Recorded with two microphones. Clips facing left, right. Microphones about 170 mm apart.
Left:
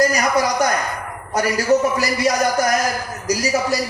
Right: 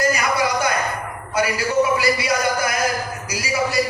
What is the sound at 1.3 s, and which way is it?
A man's voice, 40° left (ahead or behind).